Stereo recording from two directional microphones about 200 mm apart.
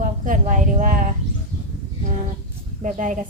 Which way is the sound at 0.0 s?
40° right (ahead or behind).